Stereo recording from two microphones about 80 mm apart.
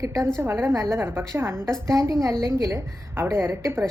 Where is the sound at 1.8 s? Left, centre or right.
Right.